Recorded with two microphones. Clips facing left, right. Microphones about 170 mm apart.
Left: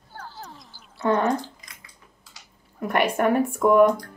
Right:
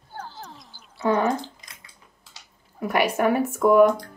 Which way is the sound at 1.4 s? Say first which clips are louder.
Right 1 dB; 25° right (ahead or behind).